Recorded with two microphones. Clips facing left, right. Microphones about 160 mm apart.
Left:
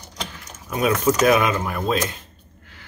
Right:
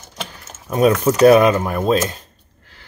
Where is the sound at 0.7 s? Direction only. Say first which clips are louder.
Right 5 dB; 35° right (ahead or behind).